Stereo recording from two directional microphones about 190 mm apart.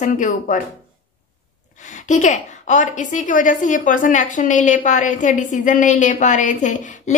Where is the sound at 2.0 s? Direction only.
40° left (ahead or behind).